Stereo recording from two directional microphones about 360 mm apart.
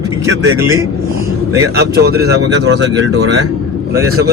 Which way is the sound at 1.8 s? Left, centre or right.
Right.